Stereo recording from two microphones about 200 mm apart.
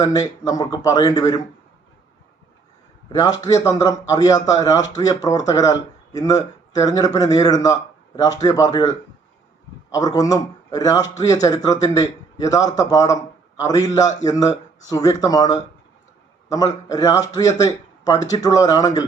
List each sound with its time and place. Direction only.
0.0 s a man's voice: 20° left (ahead or behind)
3.1 s a man's voice: 20° left (ahead or behind)